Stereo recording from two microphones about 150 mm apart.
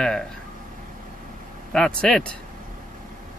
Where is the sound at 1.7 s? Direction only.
5° left (ahead or behind).